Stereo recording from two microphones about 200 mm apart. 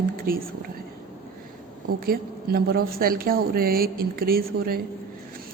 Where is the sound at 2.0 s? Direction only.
50° right (ahead or behind).